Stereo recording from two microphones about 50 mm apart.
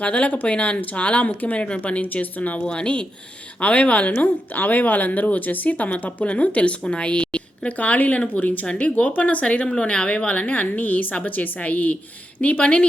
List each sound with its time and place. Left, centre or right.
0.0 s a woman's voice: left